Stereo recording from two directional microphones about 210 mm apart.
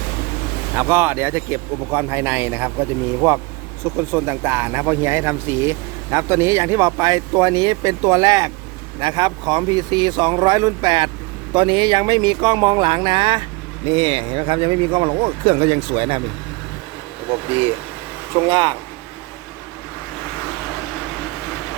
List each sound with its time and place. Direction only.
0.8 s speech: 10° right (ahead or behind)
18.4 s speech: 20° right (ahead or behind)